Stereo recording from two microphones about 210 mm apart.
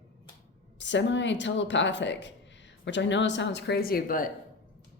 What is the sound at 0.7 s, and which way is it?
Speech, 60° left (ahead or behind).